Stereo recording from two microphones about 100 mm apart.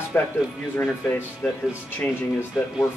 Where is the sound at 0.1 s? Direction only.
20° left (ahead or behind).